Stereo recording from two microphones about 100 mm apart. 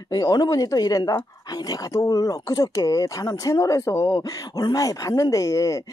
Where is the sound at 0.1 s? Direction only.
40° left (ahead or behind).